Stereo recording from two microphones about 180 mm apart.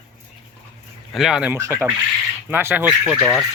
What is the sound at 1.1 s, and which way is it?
Speech, centre (ahead or behind).